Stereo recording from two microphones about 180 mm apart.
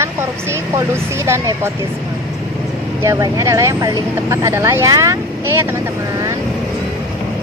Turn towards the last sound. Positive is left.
turn(degrees=-15)  # may be behind; listen again after turning